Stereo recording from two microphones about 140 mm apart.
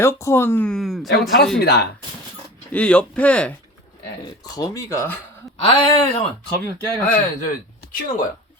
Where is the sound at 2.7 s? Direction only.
10° left (ahead or behind).